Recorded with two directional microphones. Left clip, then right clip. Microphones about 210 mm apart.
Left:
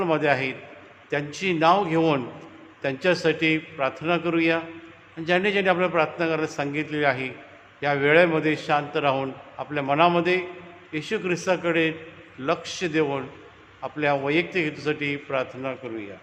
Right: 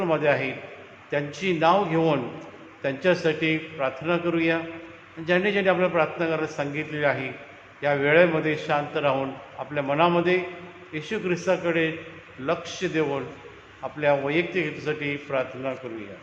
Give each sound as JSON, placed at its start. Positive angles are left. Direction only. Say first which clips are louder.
{"t": 0.0, "sound": "a man's voice", "louder": "even", "side_deg": 55}